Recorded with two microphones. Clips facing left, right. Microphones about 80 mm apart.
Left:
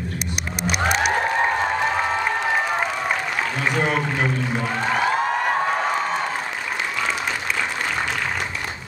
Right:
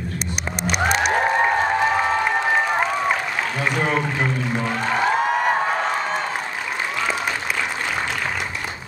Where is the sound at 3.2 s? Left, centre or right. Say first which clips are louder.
Even; centre.